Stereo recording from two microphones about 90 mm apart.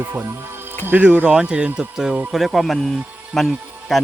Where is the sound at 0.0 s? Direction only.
30° right (ahead or behind).